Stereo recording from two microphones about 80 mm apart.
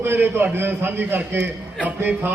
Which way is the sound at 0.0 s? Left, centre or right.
Right.